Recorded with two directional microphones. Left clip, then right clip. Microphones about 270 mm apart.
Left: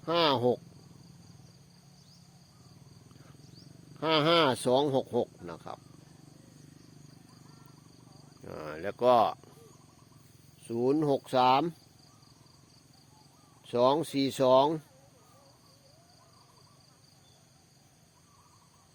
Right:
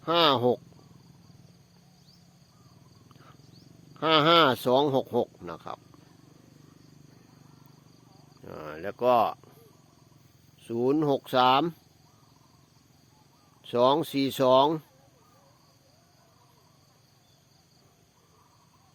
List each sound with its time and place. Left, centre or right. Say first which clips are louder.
0.0 s speech: right 4 dB; centre
3.9 s speech: right 5 dB; centre
8.4 s speech: right 1 dB; centre
10.7 s speech: right 2 dB; centre
13.7 s speech: right 3 dB; centre